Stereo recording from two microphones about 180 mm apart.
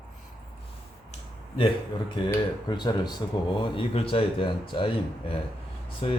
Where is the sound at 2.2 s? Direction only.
25° left (ahead or behind).